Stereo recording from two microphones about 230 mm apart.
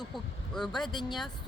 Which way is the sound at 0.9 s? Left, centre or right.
Centre.